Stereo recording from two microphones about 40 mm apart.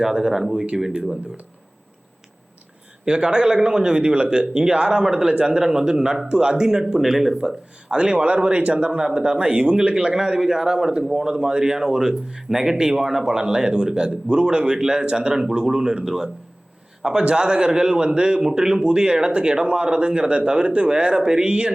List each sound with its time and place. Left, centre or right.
0.0 s speech: centre
3.0 s speech: right
5.5 s speech: centre
7.9 s speech: right
8.1 s speech: right
10.2 s speech: centre
11.3 s speech: right